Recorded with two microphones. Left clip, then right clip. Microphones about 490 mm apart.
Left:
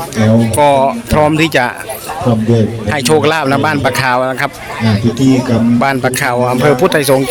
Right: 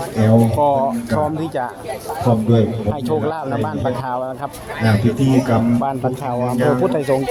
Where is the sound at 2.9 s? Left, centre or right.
Right.